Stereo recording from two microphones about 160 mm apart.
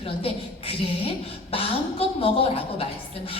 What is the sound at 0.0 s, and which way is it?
A woman's voice, 35° left (ahead or behind).